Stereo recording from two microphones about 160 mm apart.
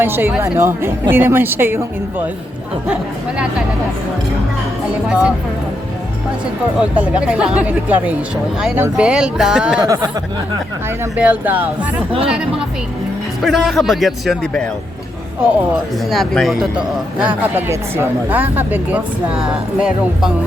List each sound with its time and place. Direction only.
0.0 s speech: 15° right (ahead or behind)
2.8 s speech: 5° right (ahead or behind)
5.0 s speech: 5° right (ahead or behind)
6.7 s speech: 5° right (ahead or behind)
9.8 s speech: 25° right (ahead or behind)
11.2 s speech: 10° right (ahead or behind)
16.0 s speech: centre (ahead or behind)